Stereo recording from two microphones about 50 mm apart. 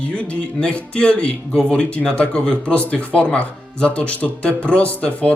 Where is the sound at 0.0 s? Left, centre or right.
Left.